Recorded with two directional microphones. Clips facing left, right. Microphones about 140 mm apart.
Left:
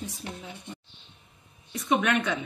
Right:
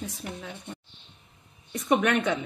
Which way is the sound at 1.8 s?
50° right (ahead or behind).